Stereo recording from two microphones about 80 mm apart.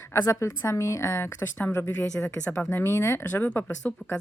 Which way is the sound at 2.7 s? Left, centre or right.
Left.